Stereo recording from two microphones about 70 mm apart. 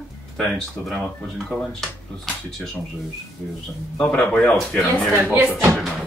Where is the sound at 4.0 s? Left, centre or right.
Centre.